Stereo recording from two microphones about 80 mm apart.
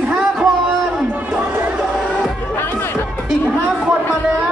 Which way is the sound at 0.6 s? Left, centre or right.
Centre.